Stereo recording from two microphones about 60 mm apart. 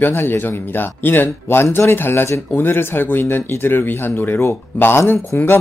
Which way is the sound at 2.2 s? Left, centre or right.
Left.